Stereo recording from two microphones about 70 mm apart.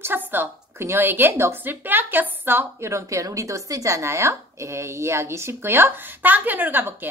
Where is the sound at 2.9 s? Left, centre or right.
Right.